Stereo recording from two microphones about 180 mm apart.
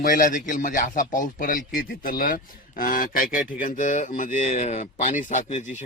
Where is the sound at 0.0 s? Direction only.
50° left (ahead or behind).